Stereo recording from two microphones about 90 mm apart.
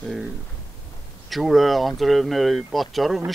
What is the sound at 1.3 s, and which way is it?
Speech, centre (ahead or behind).